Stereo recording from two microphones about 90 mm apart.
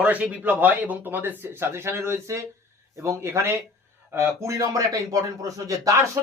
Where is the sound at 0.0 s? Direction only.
15° right (ahead or behind).